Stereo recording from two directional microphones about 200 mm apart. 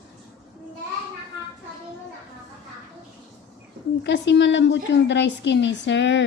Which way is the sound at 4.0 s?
60° left (ahead or behind).